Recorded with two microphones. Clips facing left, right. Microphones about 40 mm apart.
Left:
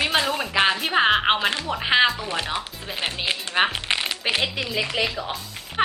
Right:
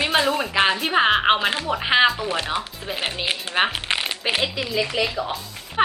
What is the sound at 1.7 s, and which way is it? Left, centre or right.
Speech, centre.